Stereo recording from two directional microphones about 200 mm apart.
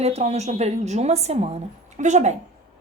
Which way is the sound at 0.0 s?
35° right (ahead or behind).